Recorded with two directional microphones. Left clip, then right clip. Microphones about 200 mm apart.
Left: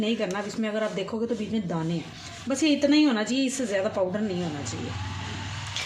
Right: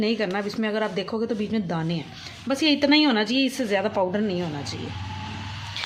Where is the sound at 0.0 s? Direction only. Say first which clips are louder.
Right 3 dB; 35° right (ahead or behind).